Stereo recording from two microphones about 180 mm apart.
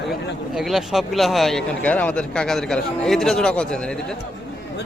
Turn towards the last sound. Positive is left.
turn(degrees=5)  # may be behind; listen again after turning